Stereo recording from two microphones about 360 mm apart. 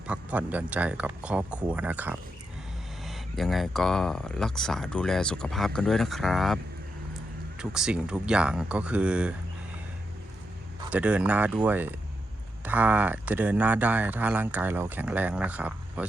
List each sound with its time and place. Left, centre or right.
0.1 s speech: centre
7.6 s speech: centre
10.8 s speech: centre